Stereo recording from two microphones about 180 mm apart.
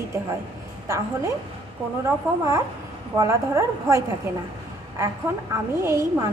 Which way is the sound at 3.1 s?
15° right (ahead or behind).